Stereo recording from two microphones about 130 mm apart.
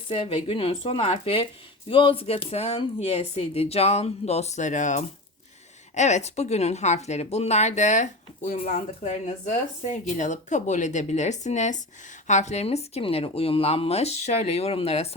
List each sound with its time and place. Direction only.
0.1 s speech: 45° left (ahead or behind)